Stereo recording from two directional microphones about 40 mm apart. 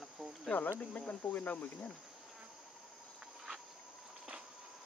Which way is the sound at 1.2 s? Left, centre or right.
Left.